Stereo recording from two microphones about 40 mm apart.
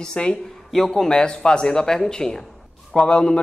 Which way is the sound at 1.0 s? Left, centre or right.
Left.